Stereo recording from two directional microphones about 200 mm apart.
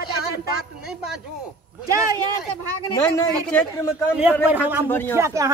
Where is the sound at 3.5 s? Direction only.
10° left (ahead or behind).